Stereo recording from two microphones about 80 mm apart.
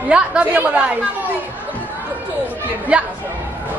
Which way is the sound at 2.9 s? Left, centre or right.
Centre.